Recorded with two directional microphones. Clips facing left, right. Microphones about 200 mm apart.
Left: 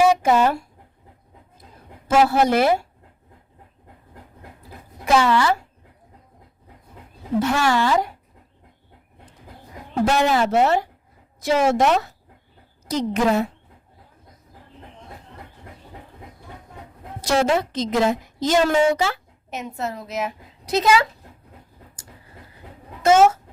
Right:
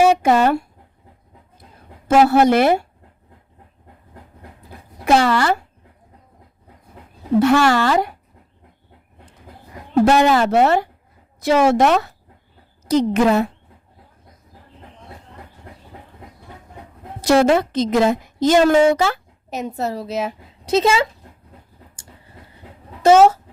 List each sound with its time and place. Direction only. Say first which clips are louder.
0.0 s speech: right 2 dB; 65° right (ahead or behind)
2.0 s a woman's voice: right 4 dB; 60° right (ahead or behind)
5.0 s a woman's voice: right 2 dB; 60° right (ahead or behind)
7.3 s speech: right 5 dB; 65° right (ahead or behind)
10.1 s a woman's voice: right 3 dB; 70° right (ahead or behind)
17.2 s a woman's voice: right 5 dB; 60° right (ahead or behind)
19.5 s speech: right 5 dB; 35° right (ahead or behind)
23.0 s speech: right 4 dB; 30° right (ahead or behind)